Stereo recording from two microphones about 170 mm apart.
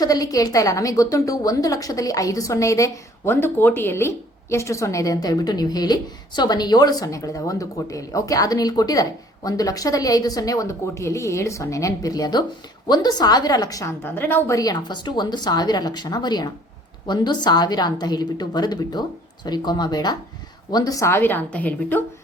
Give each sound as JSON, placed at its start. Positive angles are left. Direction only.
{"t": 0.0, "sound": "a woman's voice", "side_deg": 20}